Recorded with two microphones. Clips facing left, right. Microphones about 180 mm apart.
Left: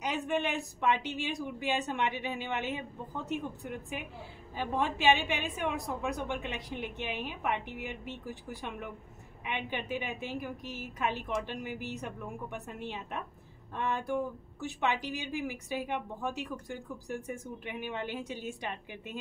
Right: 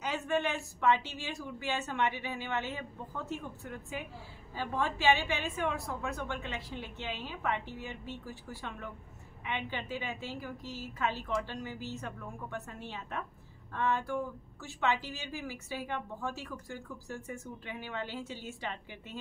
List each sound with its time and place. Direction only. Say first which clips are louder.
0.0 s speech: even; 15° left (ahead or behind)